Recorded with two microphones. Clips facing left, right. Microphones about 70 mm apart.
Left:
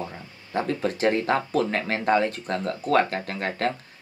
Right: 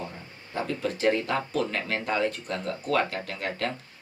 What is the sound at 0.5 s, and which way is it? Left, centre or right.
Speech, left.